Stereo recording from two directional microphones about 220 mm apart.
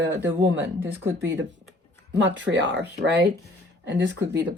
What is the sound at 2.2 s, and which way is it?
Speech, 55° right (ahead or behind).